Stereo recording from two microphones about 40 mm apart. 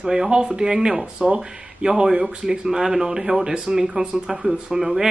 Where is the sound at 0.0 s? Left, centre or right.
Centre.